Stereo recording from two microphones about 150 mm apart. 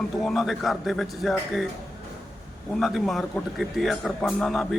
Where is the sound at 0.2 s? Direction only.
Centre (ahead or behind).